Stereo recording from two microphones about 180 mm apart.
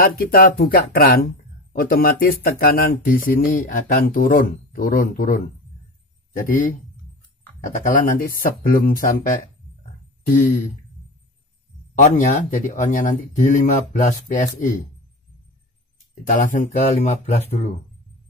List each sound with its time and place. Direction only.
0.0 s speech: 55° left (ahead or behind)
7.8 s speech: 50° left (ahead or behind)
11.9 s speech: 45° left (ahead or behind)
16.3 s speech: 45° left (ahead or behind)